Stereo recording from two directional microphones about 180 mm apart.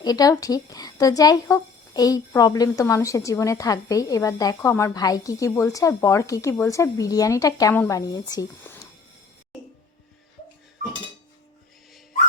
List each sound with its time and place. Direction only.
0.0 s speech: 20° left (ahead or behind)